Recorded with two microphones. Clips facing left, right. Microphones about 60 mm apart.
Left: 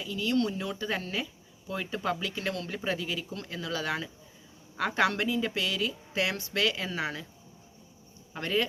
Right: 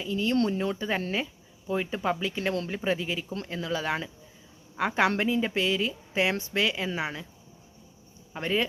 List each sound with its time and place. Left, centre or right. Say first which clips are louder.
0.0 s a woman's voice: right 3 dB; right
8.3 s speech: right 1 dB; right